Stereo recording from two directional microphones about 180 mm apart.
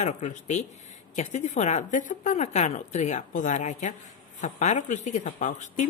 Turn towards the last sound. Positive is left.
turn(degrees=45)  # may be behind; listen again after turning